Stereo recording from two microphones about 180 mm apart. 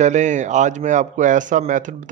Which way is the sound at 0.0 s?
40° right (ahead or behind).